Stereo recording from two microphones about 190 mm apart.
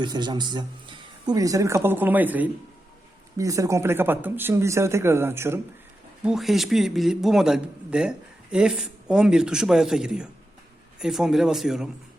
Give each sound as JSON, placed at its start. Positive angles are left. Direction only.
{"t": 0.0, "sound": "speech", "side_deg": -20}
{"t": 6.2, "sound": "a man's voice", "side_deg": 0}